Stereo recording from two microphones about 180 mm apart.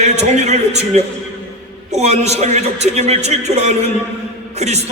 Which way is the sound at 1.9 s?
35° right (ahead or behind).